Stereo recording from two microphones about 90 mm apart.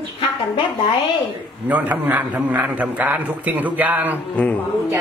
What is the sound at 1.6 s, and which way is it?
A man's voice, 15° right (ahead or behind).